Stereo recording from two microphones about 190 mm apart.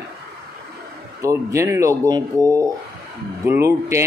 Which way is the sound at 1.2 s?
15° right (ahead or behind).